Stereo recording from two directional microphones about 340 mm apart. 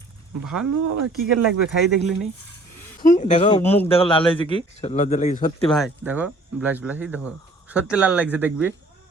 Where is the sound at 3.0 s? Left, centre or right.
Left.